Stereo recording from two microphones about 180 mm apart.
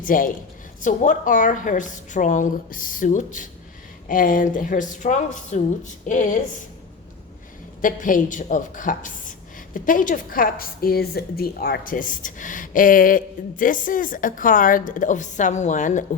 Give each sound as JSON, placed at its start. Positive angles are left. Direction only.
{"t": 0.0, "sound": "a woman's voice", "side_deg": 50}
{"t": 7.8, "sound": "a woman's voice", "side_deg": 45}